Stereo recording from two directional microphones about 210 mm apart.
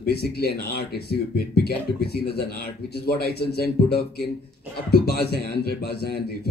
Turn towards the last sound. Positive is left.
turn(degrees=50)  # may be behind; listen again after turning